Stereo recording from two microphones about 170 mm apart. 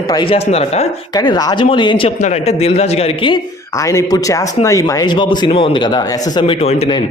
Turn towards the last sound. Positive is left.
turn(degrees=35)  # may be behind; listen again after turning